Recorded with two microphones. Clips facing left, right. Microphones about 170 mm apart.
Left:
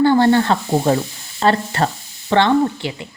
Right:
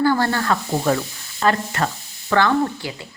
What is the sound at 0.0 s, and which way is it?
A woman's voice, 25° left (ahead or behind).